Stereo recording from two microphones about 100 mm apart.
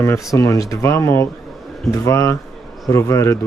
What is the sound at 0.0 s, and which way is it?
Speech, 30° left (ahead or behind).